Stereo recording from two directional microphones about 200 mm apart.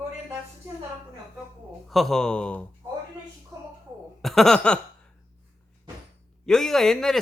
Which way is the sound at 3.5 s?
20° right (ahead or behind).